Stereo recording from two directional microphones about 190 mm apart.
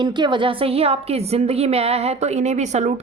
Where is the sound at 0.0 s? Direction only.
25° right (ahead or behind).